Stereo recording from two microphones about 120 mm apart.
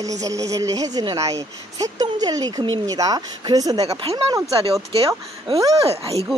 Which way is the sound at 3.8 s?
55° right (ahead or behind).